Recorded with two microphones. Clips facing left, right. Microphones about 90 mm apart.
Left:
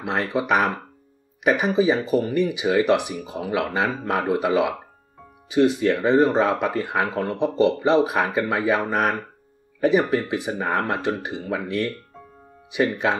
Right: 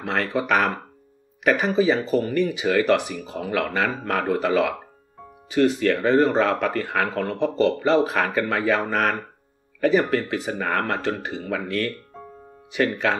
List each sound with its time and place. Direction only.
0.0 s speech: 15° left (ahead or behind)